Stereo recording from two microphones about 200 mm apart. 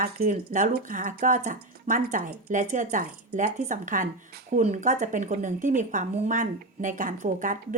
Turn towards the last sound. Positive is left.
turn(degrees=-40)  # may be behind; listen again after turning